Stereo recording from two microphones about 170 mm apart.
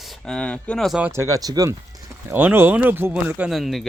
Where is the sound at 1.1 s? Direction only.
20° right (ahead or behind).